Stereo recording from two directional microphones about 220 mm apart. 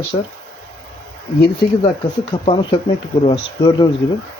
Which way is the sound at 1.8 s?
25° left (ahead or behind).